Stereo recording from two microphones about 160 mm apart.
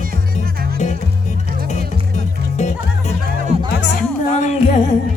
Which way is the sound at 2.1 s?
45° left (ahead or behind).